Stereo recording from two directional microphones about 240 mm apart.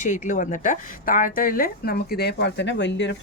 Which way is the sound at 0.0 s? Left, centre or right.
Left.